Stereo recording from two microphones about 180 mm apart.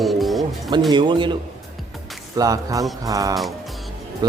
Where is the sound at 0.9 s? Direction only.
25° right (ahead or behind).